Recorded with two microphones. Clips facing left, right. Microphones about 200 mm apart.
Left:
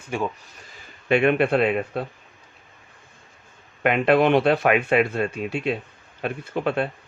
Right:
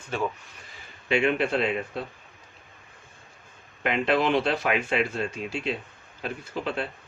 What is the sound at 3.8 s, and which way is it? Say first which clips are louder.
Speech: left 6 dB; 55° left (ahead or behind).